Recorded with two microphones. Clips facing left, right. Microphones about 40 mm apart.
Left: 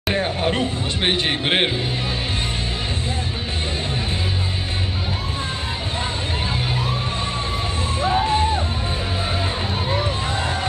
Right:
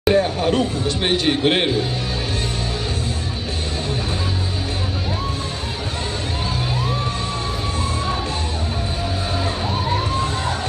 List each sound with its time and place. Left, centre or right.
0.1 s speech: left
8.3 s music: left